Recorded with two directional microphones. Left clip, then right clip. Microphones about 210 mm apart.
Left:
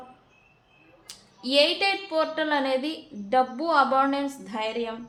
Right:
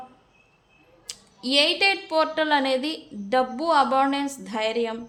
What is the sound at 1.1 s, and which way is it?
A woman's voice, 30° right (ahead or behind).